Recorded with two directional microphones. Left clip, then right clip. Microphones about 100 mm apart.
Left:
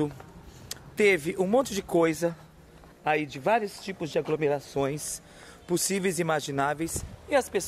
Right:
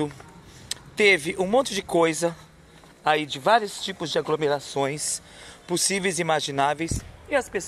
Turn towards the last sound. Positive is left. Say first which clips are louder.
# even
turn(degrees=30)  # may be behind; listen again after turning